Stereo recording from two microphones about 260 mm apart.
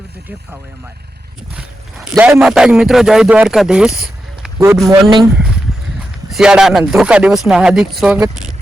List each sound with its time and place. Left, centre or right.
1.5 s a man's voice: centre